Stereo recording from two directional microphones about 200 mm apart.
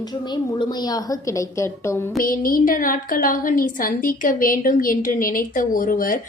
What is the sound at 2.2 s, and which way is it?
A woman's voice, 45° left (ahead or behind).